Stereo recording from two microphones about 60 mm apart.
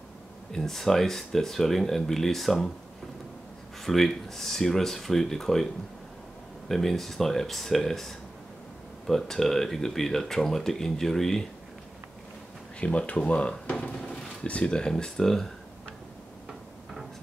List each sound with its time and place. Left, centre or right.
0.5 s speech: centre
3.8 s speech: centre
6.7 s speech: centre
12.8 s speech: left; by 15.4 s centre